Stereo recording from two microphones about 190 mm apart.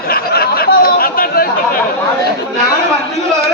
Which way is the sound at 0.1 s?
55° left (ahead or behind).